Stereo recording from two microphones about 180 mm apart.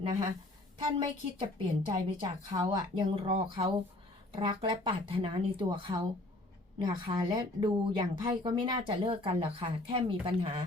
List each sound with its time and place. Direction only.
0.8 s a woman's voice: 25° right (ahead or behind)